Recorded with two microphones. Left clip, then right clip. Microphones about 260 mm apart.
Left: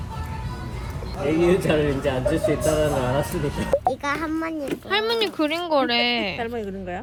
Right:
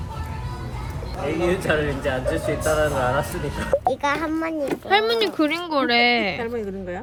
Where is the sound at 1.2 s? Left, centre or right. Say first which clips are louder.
Left 3 dB; centre.